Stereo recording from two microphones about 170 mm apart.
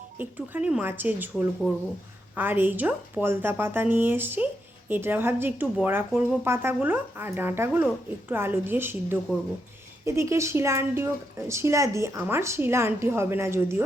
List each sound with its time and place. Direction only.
0.2 s speech: 10° right (ahead or behind)